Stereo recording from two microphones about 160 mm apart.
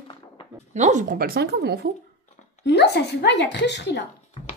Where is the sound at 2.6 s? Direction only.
90° left.